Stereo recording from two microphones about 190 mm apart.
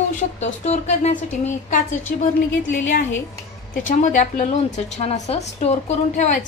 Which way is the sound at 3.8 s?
40° left (ahead or behind).